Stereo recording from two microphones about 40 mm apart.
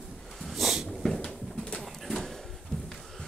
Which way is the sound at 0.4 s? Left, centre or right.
Centre.